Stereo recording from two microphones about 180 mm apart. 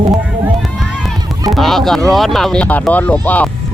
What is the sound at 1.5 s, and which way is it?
Speech, centre (ahead or behind).